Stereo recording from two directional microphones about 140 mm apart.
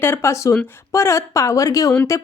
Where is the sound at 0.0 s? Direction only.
20° left (ahead or behind).